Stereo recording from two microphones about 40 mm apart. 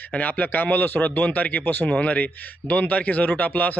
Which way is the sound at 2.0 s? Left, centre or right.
Left.